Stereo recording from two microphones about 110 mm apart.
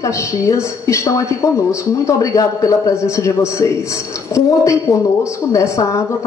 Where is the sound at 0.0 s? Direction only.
25° left (ahead or behind).